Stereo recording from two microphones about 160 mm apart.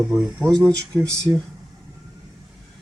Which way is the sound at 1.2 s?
5° left (ahead or behind).